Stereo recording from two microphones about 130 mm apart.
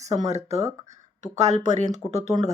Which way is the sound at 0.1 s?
60° right (ahead or behind).